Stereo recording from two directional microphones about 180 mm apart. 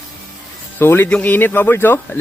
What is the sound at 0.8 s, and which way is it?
Speech, 10° left (ahead or behind).